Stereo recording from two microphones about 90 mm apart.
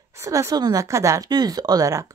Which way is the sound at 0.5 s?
50° right (ahead or behind).